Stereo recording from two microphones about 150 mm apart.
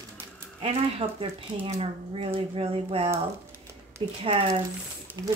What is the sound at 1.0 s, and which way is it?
Speech, 35° right (ahead or behind).